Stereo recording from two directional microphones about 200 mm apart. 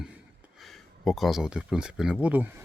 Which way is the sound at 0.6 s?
Centre (ahead or behind).